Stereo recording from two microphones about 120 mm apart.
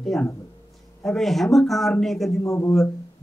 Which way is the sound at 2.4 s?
25° left (ahead or behind).